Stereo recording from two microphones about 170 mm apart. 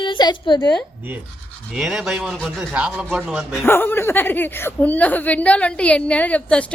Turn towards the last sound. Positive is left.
turn(degrees=10)  # may be behind; listen again after turning